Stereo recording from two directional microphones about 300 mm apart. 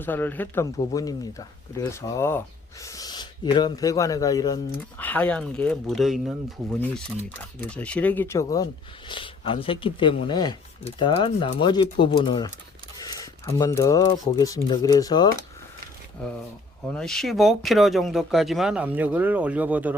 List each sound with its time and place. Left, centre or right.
0.0 s speech: centre
16.9 s speech: centre